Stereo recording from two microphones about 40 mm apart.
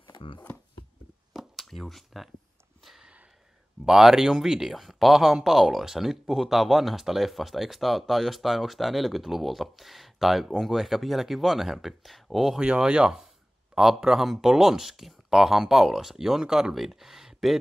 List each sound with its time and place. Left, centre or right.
1.3 s a sound: centre
3.8 s speech: centre
12.5 s speech: right
13.7 s speech: centre